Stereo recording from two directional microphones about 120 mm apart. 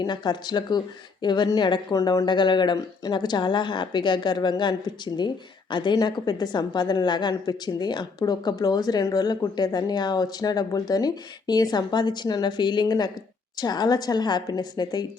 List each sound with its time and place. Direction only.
0.0 s a woman's voice: 35° left (ahead or behind)